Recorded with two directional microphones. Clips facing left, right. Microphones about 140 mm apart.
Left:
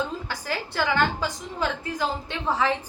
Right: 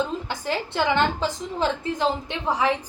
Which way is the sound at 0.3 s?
20° right (ahead or behind).